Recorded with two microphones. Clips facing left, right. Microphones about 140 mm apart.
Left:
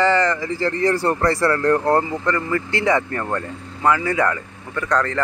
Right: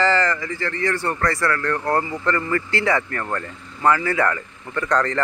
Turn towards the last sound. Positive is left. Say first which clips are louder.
# even
turn(degrees=5)  # may be behind; listen again after turning